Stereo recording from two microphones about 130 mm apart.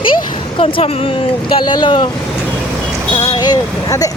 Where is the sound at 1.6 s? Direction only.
35° left (ahead or behind).